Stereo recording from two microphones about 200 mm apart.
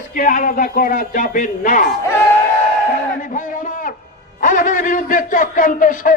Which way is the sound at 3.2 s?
40° left (ahead or behind).